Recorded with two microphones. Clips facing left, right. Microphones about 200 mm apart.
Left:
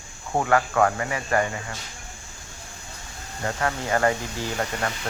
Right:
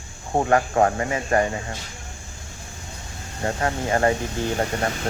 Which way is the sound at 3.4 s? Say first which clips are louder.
Right 2 dB; 30° right (ahead or behind).